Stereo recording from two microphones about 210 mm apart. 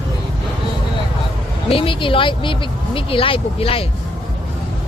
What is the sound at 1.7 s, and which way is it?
Speech, 25° left (ahead or behind).